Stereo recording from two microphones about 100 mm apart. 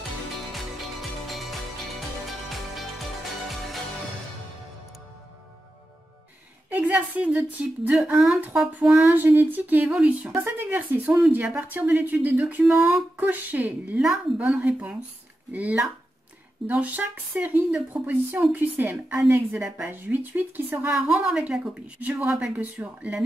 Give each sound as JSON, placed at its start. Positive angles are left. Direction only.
{"t": 0.5, "sound": "music", "side_deg": 0}
{"t": 2.7, "sound": "music", "side_deg": 0}
{"t": 6.7, "sound": "a woman's voice", "side_deg": -15}
{"t": 9.0, "sound": "a woman's voice", "side_deg": -20}